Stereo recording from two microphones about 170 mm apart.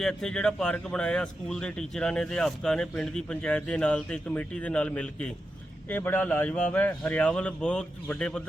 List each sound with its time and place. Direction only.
0.0 s a man's voice: 5° left (ahead or behind)